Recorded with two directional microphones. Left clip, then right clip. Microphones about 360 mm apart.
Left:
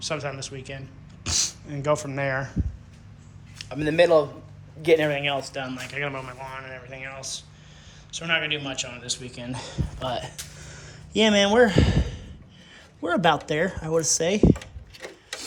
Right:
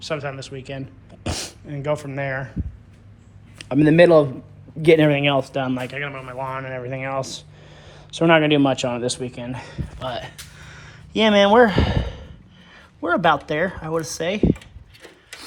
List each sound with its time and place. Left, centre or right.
0.0 s speech: centre
3.6 s speech: centre
4.9 s speech: centre
6.0 s speech: centre
7.0 s speech: centre